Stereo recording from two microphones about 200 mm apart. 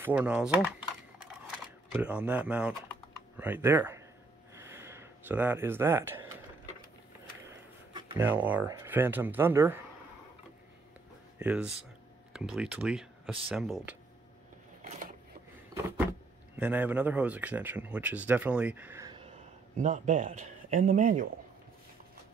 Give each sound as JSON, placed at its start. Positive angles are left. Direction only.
{"t": 0.0, "sound": "speech", "side_deg": -5}
{"t": 1.9, "sound": "speech", "side_deg": -5}
{"t": 4.6, "sound": "a sound", "side_deg": -15}
{"t": 8.2, "sound": "speech", "side_deg": -10}
{"t": 11.3, "sound": "speech", "side_deg": -5}
{"t": 15.7, "sound": "speech", "side_deg": -10}
{"t": 19.8, "sound": "speech", "side_deg": -40}